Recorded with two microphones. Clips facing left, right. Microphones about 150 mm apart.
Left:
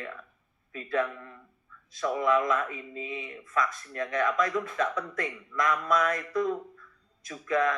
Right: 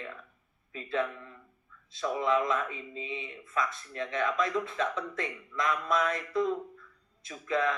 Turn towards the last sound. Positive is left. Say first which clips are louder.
# left 3 dB
turn(degrees=-25)  # may be behind; listen again after turning